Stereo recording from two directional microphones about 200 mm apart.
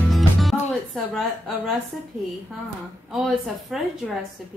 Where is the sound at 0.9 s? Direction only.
Centre (ahead or behind).